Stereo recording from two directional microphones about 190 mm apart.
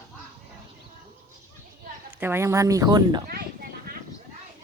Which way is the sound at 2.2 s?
15° right (ahead or behind).